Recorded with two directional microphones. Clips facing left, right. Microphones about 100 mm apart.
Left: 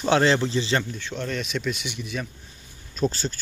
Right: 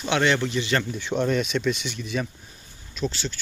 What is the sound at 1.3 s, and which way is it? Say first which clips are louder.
Speech: right 4 dB; centre (ahead or behind).